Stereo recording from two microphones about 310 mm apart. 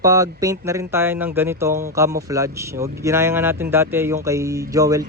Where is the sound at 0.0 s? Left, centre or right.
Centre.